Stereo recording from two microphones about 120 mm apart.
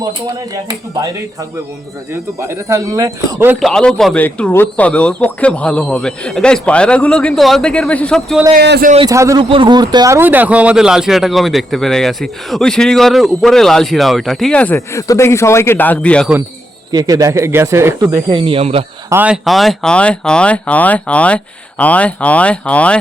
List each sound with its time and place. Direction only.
0.3 s speech: 30° right (ahead or behind)
3.6 s a man's voice: 5° left (ahead or behind)
9.0 s speech: 25° right (ahead or behind)
9.4 s speech: 45° right (ahead or behind)
10.2 s a man's voice: 15° right (ahead or behind); by 14.8 s 10° left (ahead or behind)
14.8 s a man's voice: 25° left (ahead or behind); by 16.3 s 10° left (ahead or behind)
16.9 s speech: 30° right (ahead or behind)
18.3 s speech: 50° right (ahead or behind)
19.1 s speech: 10° right (ahead or behind)
19.5 s speech: centre (ahead or behind)